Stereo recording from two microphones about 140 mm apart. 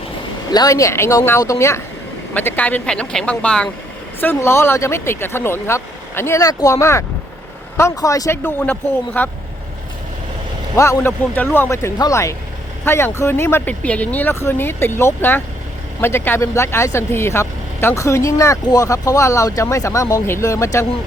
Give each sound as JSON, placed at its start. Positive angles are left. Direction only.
{"t": 0.5, "sound": "speech", "side_deg": 25}
{"t": 8.4, "sound": "speech", "side_deg": 10}
{"t": 10.8, "sound": "speech", "side_deg": 20}